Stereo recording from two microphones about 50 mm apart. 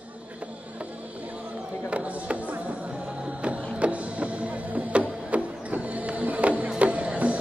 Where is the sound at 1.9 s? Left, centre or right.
Right.